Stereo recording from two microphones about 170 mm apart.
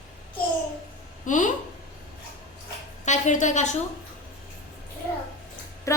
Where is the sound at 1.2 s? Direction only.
50° left (ahead or behind).